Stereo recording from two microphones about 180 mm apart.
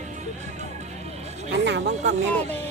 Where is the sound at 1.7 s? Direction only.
70° right (ahead or behind).